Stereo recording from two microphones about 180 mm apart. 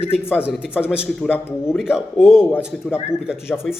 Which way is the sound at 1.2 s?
10° left (ahead or behind).